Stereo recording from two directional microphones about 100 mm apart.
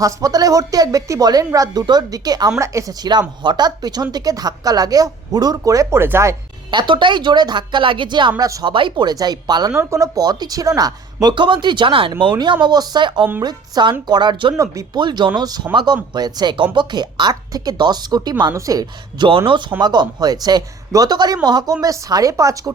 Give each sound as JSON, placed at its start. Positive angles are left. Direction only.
{"t": 0.0, "sound": "speech", "side_deg": -35}
{"t": 6.7, "sound": "speech", "side_deg": -50}
{"t": 8.4, "sound": "speech", "side_deg": -35}
{"t": 8.6, "sound": "speech", "side_deg": -55}
{"t": 9.7, "sound": "speech", "side_deg": -30}
{"t": 12.6, "sound": "speech", "side_deg": -45}
{"t": 15.7, "sound": "speech", "side_deg": -50}